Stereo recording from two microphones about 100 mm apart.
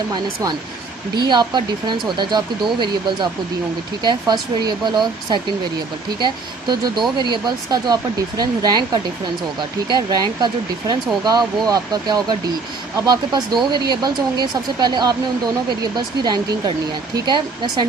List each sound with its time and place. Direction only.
1.1 s speech: 45° right (ahead or behind)